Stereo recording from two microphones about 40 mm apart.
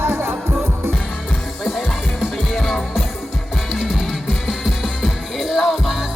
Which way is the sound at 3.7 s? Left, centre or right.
Centre.